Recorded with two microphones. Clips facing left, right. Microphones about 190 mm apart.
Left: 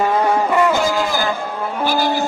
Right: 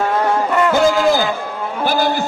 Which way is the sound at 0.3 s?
5° left (ahead or behind).